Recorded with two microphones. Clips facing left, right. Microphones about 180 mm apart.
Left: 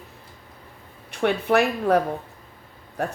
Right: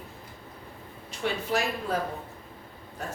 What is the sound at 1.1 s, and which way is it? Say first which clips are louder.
Speech: left 8 dB; 60° left (ahead or behind).